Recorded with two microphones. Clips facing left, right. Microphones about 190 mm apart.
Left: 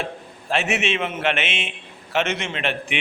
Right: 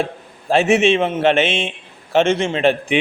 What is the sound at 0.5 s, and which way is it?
A man's voice, 30° right (ahead or behind).